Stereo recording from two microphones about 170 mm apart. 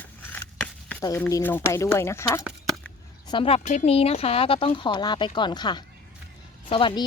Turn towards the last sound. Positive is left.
turn(degrees=30)  # may be behind; listen again after turning